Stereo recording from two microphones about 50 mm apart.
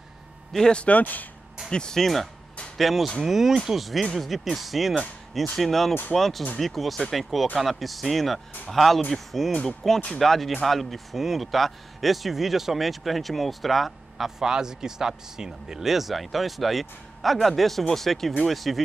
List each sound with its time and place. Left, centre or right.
0.7 s speech: left
0.9 s speech: left
1.7 s speech: centre
9.5 s speech: centre
10.1 s speech: centre